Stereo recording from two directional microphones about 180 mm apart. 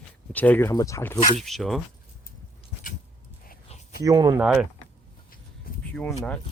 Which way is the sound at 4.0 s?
20° right (ahead or behind).